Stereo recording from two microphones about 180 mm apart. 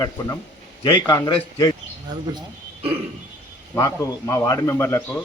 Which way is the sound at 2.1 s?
20° right (ahead or behind).